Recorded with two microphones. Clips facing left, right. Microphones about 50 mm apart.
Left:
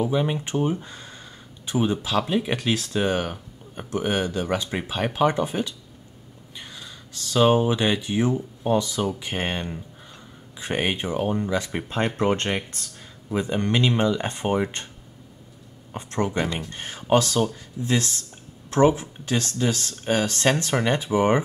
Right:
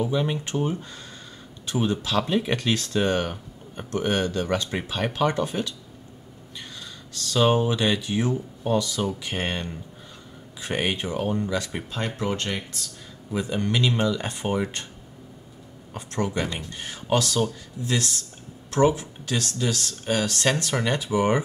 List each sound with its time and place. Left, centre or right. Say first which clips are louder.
0.0 s speech: left 2 dB; centre
6.8 s speech: right 1 dB; centre
12.2 s speech: left 4 dB; left
13.3 s speech: left 2 dB; left
15.9 s speech: left 2 dB; left